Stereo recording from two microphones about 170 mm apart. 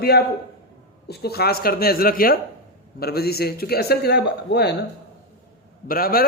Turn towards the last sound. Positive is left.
turn(degrees=60)  # may be behind; listen again after turning